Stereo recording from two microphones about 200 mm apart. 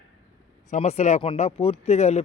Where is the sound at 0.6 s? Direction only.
35° left (ahead or behind).